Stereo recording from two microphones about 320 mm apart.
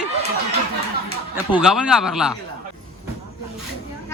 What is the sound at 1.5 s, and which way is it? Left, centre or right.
Speech, centre.